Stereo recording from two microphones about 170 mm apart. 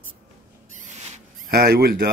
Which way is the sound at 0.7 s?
45° right (ahead or behind).